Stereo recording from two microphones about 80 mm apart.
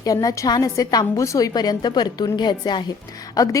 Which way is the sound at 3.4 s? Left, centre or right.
Left.